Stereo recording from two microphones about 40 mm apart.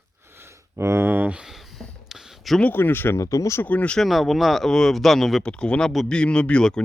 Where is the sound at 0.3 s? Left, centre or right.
Right.